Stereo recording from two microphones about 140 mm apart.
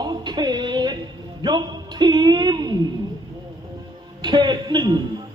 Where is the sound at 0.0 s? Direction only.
30° right (ahead or behind).